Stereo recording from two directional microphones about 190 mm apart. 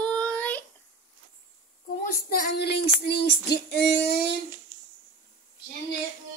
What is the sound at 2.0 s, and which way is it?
Speech, 55° left (ahead or behind).